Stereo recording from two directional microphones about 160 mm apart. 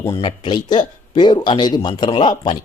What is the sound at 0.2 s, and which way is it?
Speech, 30° left (ahead or behind).